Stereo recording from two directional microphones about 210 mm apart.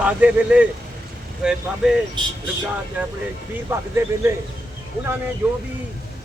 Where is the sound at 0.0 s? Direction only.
5° right (ahead or behind).